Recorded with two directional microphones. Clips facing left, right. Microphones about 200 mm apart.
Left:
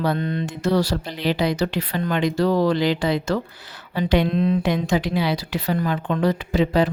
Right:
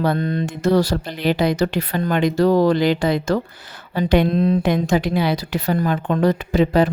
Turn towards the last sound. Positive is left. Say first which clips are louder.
# right 3 dB
turn(degrees=-50)  # may be behind; listen again after turning